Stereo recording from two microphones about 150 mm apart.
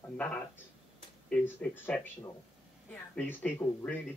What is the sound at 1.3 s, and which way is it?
A man's voice, 10° left (ahead or behind).